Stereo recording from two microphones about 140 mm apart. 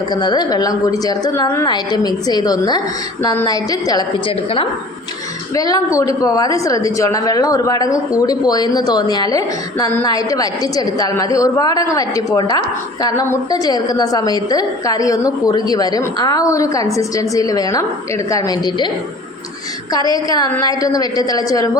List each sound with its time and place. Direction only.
0.1 s a woman's voice: 30° left (ahead or behind)
5.5 s a woman's voice: 25° left (ahead or behind)
19.9 s a woman's voice: 25° left (ahead or behind)